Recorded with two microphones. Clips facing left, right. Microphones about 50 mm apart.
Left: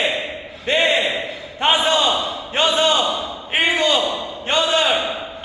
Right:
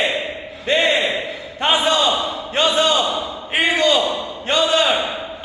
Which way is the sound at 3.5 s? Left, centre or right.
Left.